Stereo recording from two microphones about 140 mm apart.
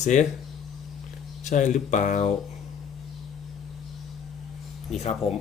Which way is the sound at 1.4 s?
60° left (ahead or behind).